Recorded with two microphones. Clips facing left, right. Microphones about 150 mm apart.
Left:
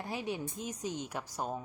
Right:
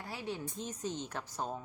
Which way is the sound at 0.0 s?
20° left (ahead or behind).